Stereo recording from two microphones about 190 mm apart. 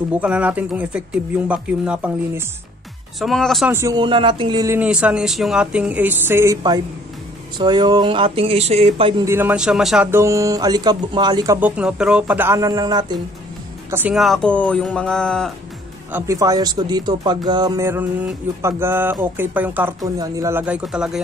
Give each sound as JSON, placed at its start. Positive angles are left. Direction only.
{"t": 0.1, "sound": "speech", "side_deg": -5}
{"t": 3.7, "sound": "speech", "side_deg": -20}
{"t": 4.7, "sound": "speech", "side_deg": -5}
{"t": 9.2, "sound": "speech", "side_deg": -10}
{"t": 10.2, "sound": "speech", "side_deg": -15}
{"t": 11.7, "sound": "speech", "side_deg": -5}
{"t": 13.8, "sound": "speech", "side_deg": -10}
{"t": 14.1, "sound": "speech", "side_deg": 0}
{"t": 16.1, "sound": "speech", "side_deg": -15}